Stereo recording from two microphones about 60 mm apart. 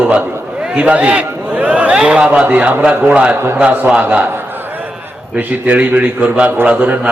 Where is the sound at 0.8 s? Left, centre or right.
Right.